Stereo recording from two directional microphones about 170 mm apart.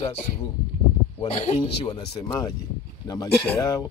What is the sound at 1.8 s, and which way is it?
Speech, 25° left (ahead or behind).